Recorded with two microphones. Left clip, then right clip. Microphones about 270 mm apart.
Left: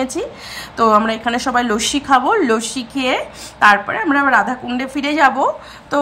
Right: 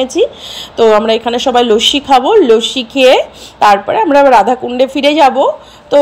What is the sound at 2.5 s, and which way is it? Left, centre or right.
Speech, centre.